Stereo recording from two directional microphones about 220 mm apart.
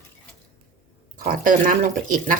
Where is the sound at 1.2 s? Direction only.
40° right (ahead or behind).